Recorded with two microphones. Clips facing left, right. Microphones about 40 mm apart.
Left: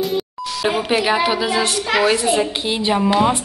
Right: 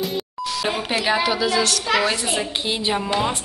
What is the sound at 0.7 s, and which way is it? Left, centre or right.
A woman's voice, centre.